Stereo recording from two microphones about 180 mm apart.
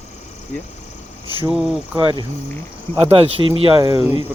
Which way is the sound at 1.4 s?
5° right (ahead or behind).